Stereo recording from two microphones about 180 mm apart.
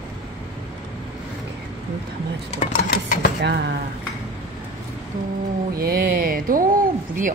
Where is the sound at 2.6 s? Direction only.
45° left (ahead or behind).